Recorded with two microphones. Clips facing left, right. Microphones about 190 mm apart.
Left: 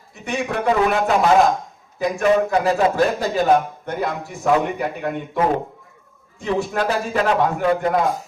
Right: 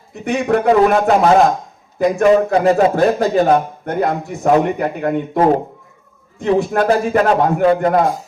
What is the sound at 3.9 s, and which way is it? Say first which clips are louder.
A man's voice: right 6 dB; 55° right (ahead or behind).